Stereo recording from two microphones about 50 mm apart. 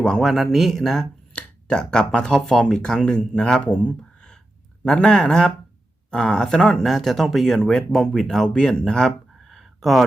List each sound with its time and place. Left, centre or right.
0.0 s speech: centre
0.3 s speech: centre
1.3 s speech: left
4.9 s speech: centre
9.5 s a sound: centre